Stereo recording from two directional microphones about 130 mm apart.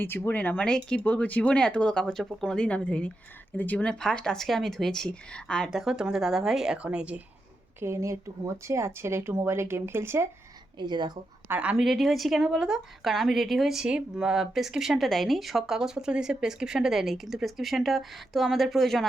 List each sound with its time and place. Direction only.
0.0 s speech: 15° left (ahead or behind); by 7.2 s 10° right (ahead or behind)
7.8 s speech: 20° right (ahead or behind)
10.8 s speech: 35° right (ahead or behind)
11.4 s speech: 10° right (ahead or behind)